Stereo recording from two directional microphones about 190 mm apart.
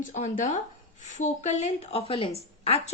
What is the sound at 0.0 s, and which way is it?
A woman's voice, 40° left (ahead or behind).